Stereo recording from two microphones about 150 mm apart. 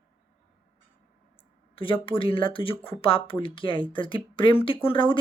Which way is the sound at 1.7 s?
35° left (ahead or behind).